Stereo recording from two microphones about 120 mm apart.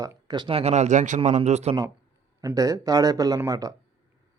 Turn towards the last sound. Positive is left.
turn(degrees=-30)  # may be behind; listen again after turning